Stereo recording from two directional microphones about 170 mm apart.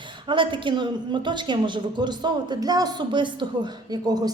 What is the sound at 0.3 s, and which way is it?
A woman's voice, 30° right (ahead or behind).